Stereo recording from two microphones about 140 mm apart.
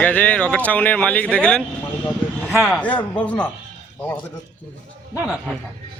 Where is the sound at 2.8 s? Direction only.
10° left (ahead or behind).